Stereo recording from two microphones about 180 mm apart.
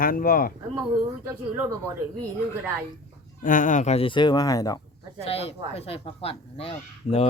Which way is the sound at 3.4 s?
45° left (ahead or behind).